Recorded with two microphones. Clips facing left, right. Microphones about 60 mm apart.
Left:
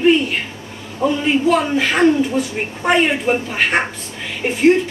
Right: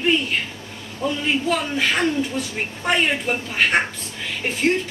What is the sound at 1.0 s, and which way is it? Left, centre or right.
A woman's voice, centre.